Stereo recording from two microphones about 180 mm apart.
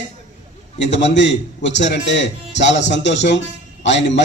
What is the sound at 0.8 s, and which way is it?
A man's voice, 80° left.